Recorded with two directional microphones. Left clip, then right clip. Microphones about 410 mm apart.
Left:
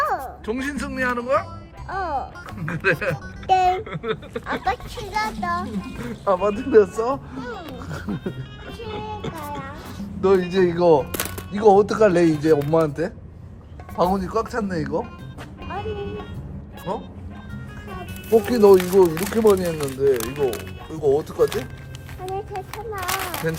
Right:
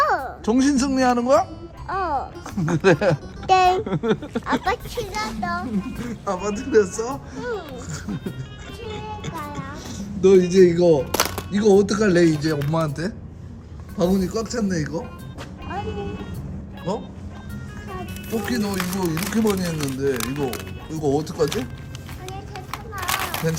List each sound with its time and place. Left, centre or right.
0.0 s a child's voice: centre
8.8 s music: centre
10.2 s a child's voice: centre
11.0 s music: centre
11.5 s speech: left
12.0 s a child's voice: centre
14.0 s a child's voice: centre
15.6 s music: centre
17.5 s speech: centre
22.3 s a sound: centre